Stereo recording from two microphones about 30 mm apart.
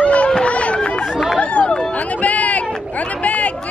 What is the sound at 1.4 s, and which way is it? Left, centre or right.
Chatter, left.